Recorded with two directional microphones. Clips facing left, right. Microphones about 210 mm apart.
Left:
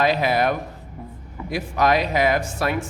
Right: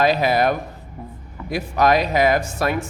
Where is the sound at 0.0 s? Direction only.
40° right (ahead or behind).